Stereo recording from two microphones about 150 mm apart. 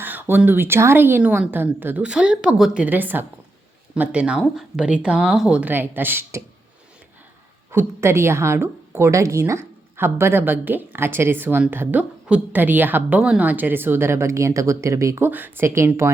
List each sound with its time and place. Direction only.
0.0 s a woman's voice: 15° right (ahead or behind)
7.7 s a woman's voice: 15° right (ahead or behind)